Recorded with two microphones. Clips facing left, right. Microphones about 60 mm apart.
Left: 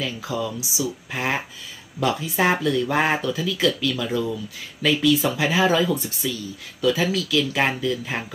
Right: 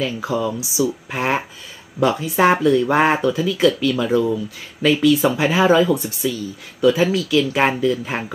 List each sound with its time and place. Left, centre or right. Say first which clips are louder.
0.0 s speech: right 6 dB; right
0.4 s speech: right 6 dB; right